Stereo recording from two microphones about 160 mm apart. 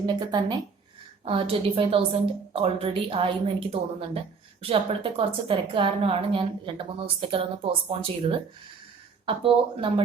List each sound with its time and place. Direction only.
0.1 s a woman's voice: 25° right (ahead or behind)
9.2 s a woman's voice: 35° right (ahead or behind)